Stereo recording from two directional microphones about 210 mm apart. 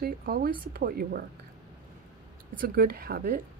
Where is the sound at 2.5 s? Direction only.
45° right (ahead or behind).